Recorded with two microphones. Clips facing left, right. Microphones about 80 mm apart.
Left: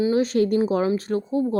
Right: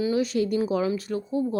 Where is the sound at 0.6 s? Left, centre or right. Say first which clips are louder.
Left 4 dB; left.